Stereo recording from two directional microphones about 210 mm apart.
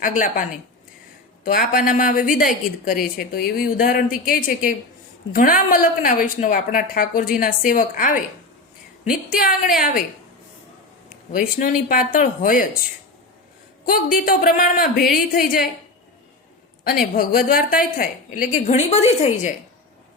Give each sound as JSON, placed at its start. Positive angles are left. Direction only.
{"t": 0.0, "sound": "a woman's voice", "side_deg": 40}
{"t": 1.5, "sound": "a woman's voice", "side_deg": 45}
{"t": 11.3, "sound": "a woman's voice", "side_deg": 40}
{"t": 13.8, "sound": "a man's voice", "side_deg": 45}
{"t": 17.2, "sound": "a woman's voice", "side_deg": 45}